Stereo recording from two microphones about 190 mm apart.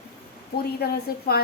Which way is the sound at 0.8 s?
55° left (ahead or behind).